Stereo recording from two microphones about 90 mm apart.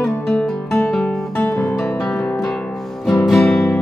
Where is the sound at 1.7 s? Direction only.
5° left (ahead or behind).